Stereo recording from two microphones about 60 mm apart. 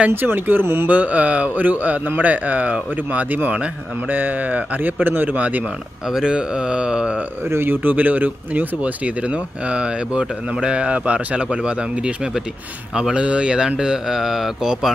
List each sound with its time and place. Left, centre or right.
0.1 s speech: right
0.8 s speech: right
6.1 s speech: centre
7.4 s speech: right; by 14.9 s centre